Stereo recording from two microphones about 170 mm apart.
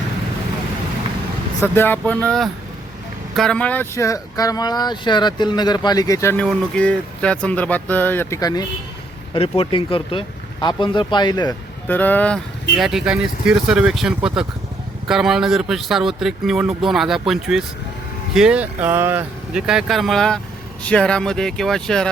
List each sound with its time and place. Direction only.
1.6 s speech: 10° left (ahead or behind)
6.4 s speech: 5° left (ahead or behind); by 11.5 s 25° left (ahead or behind)
11.9 s speech: 10° left (ahead or behind)
12.7 s speech: centre (ahead or behind)